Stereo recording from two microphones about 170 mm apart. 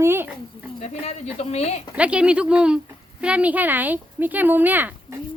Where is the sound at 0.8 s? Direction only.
40° left (ahead or behind).